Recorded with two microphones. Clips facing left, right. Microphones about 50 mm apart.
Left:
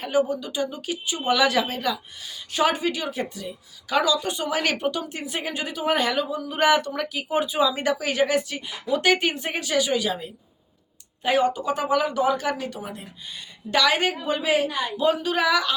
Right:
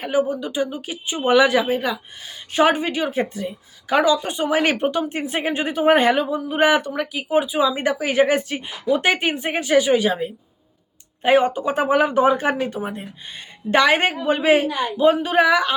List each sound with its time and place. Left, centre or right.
0.0 s a woman's voice: centre
8.9 s a woman's voice: right